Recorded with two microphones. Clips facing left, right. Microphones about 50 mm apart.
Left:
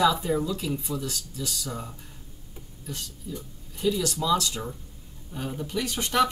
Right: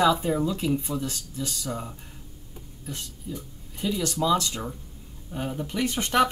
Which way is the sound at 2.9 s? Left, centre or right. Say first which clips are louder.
Right 1 dB; right.